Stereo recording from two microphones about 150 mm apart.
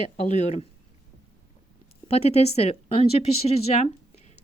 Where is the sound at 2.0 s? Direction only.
45° left (ahead or behind).